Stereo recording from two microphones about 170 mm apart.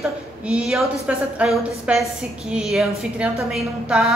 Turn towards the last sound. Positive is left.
turn(degrees=0)  # may be behind; listen again after turning